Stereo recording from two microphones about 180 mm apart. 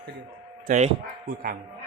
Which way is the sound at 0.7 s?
45° right (ahead or behind).